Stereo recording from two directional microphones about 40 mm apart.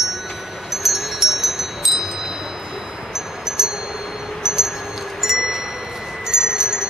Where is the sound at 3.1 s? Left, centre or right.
Centre.